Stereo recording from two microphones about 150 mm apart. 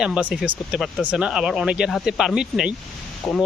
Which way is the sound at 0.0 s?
10° right (ahead or behind).